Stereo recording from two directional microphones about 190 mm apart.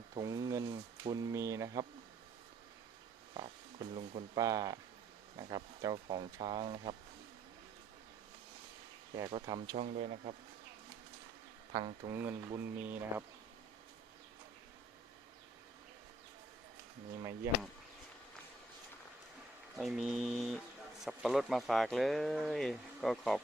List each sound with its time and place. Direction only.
0.1 s speech: 20° right (ahead or behind)
3.3 s speech: 25° right (ahead or behind)
9.1 s speech: 20° right (ahead or behind)
9.7 s speech: 40° right (ahead or behind)
11.7 s speech: 25° right (ahead or behind)
12.1 s speech: 15° right (ahead or behind)
17.2 s speech: 15° right (ahead or behind)
19.7 s speech: centre (ahead or behind)